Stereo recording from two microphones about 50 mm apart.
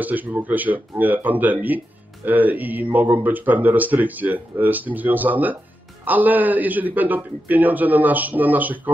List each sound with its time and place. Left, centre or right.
0.0 s speech: right